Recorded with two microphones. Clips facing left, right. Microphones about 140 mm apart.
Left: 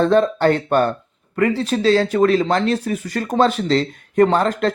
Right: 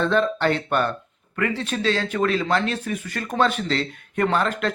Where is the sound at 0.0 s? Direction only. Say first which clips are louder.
Left 6 dB; 40° left (ahead or behind).